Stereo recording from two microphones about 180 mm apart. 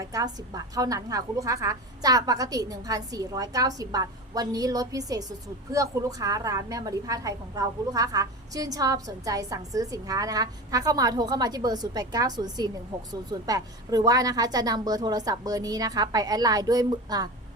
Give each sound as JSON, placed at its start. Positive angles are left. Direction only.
{"t": 0.0, "sound": "a woman's voice", "side_deg": -20}